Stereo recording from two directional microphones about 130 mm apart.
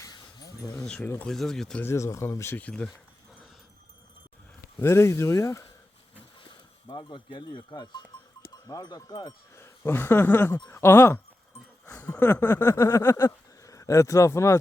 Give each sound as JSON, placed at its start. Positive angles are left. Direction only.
{"t": 0.0, "sound": "a sound", "side_deg": 30}
{"t": 0.8, "sound": "speech", "side_deg": 10}
{"t": 1.3, "sound": "speech", "side_deg": 5}
{"t": 1.8, "sound": "speech", "side_deg": 20}
{"t": 4.8, "sound": "speech", "side_deg": 20}
{"t": 6.8, "sound": "speech", "side_deg": 35}
{"t": 9.6, "sound": "speech", "side_deg": 15}
{"t": 11.9, "sound": "a sound", "side_deg": 15}